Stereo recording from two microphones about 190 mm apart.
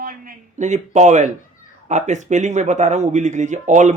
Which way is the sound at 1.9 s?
40° right (ahead or behind).